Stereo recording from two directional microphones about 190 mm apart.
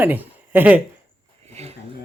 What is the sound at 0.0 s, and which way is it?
Speech, 10° right (ahead or behind).